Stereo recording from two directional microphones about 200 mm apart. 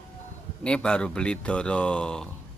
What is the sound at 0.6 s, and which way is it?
A man's voice, 5° left (ahead or behind).